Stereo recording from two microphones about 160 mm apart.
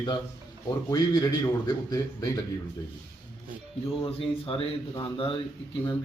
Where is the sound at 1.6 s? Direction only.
25° left (ahead or behind).